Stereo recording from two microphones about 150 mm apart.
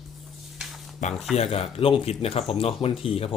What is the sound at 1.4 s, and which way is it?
Speech, 40° left (ahead or behind).